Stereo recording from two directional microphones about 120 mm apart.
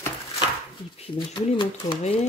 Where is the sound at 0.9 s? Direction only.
60° left (ahead or behind).